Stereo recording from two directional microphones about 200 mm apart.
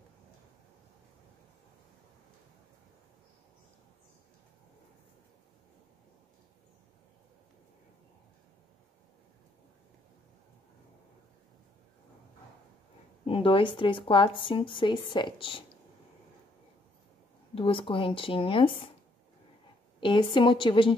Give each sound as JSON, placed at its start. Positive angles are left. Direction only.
{"t": 13.2, "sound": "speech", "side_deg": 25}
{"t": 17.6, "sound": "speech", "side_deg": 25}
{"t": 20.0, "sound": "speech", "side_deg": 25}